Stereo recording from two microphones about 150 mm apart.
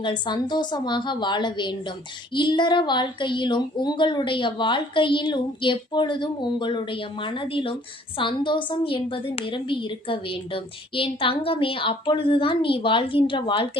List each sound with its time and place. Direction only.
0.0 s a woman's voice: 30° left (ahead or behind)